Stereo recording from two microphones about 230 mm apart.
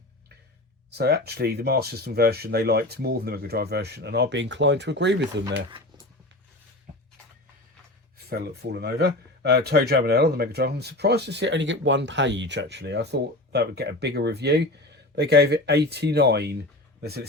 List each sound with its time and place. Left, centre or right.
0.9 s speech: right
8.3 s speech: right